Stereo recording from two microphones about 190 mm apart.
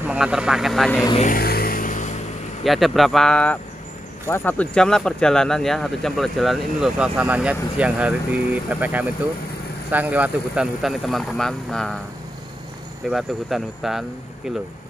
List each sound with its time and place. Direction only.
0.1 s speech: 5° right (ahead or behind)
1.1 s vehicle: 45° left (ahead or behind)
2.6 s speech: centre (ahead or behind)
13.1 s speech: centre (ahead or behind)